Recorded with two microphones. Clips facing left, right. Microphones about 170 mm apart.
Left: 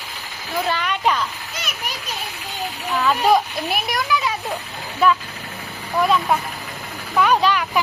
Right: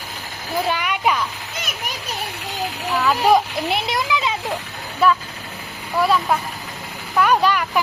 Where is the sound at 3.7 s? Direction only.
25° right (ahead or behind).